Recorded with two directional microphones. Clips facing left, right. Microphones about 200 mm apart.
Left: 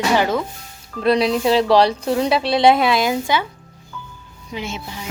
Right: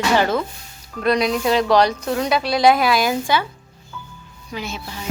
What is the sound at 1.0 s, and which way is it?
Speech, 30° left (ahead or behind).